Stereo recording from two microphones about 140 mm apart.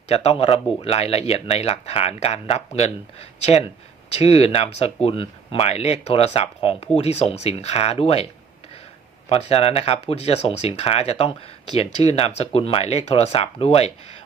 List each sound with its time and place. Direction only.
0.1 s speech: 45° left (ahead or behind)
9.3 s speech: 45° left (ahead or behind)